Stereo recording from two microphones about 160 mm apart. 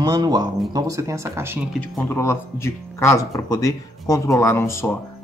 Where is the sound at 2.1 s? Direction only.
15° left (ahead or behind).